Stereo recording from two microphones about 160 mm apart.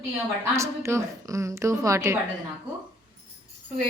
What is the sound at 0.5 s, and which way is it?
A woman's voice, 15° right (ahead or behind).